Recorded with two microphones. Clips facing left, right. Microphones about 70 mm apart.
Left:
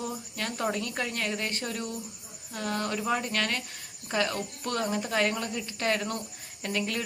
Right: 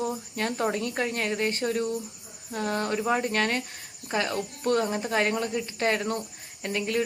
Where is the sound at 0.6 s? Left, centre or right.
Right.